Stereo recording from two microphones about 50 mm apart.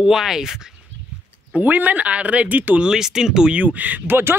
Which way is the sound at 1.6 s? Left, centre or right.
Right.